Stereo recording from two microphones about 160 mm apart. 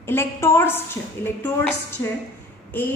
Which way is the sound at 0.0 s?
15° left (ahead or behind).